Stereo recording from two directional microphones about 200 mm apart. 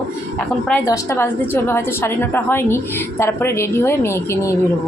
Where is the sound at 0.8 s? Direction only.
15° left (ahead or behind).